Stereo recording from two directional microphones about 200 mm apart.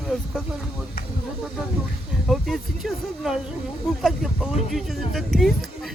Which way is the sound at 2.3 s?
Centre (ahead or behind).